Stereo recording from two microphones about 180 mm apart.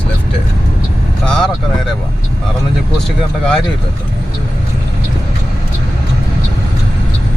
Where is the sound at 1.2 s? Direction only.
5° left (ahead or behind).